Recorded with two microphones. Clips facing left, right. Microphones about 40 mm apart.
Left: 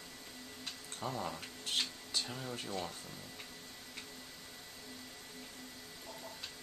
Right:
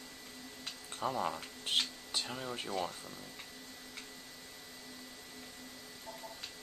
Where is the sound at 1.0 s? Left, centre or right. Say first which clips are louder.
Right 5 dB; right.